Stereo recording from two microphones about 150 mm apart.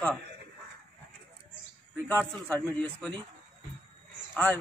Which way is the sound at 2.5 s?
10° left (ahead or behind).